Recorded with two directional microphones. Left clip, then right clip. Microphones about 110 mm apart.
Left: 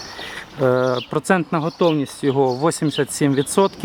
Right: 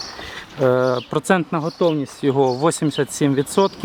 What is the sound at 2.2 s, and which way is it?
Speech, centre (ahead or behind).